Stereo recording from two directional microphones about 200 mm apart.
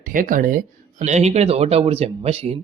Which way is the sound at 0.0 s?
40° right (ahead or behind).